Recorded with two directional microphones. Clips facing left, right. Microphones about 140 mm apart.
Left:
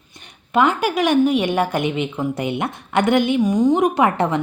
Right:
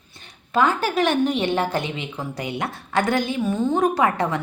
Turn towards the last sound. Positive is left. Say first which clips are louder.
# left 3 dB
turn(degrees=25)  # may be behind; listen again after turning